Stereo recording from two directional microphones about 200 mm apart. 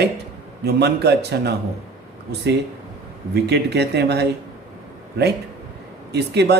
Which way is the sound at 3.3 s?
55° right (ahead or behind).